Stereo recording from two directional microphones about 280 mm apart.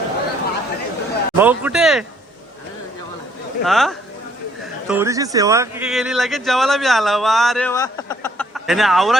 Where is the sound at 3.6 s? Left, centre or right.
Centre.